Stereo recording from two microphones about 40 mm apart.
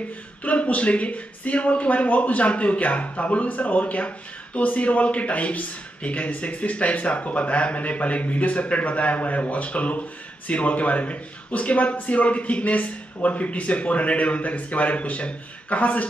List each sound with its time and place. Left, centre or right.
0.4 s a man's voice: left